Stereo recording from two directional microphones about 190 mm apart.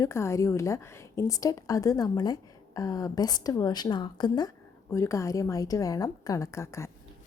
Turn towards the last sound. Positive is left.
turn(degrees=15)  # may be behind; listen again after turning